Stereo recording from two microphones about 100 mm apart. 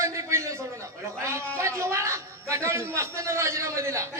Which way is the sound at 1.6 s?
30° right (ahead or behind).